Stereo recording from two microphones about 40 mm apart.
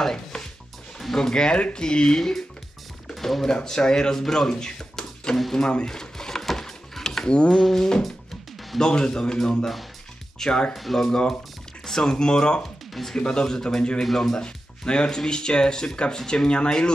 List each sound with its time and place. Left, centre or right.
0.9 s speech: centre
2.1 s speech: centre
3.1 s music: centre
3.4 s speech: centre
5.9 s a sound: centre
6.4 s mechanisms: centre
7.5 s speech: centre
10.7 s speech: centre
11.1 s speech: centre
12.6 s music: centre
13.2 s speech: centre
14.4 s speech: left